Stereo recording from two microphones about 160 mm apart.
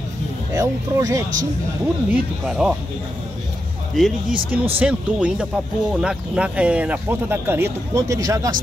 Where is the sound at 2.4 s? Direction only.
5° right (ahead or behind).